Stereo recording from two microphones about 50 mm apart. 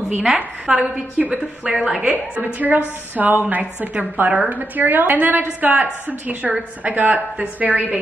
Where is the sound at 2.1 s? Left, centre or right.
Right.